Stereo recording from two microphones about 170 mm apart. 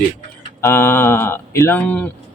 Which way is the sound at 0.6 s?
15° left (ahead or behind).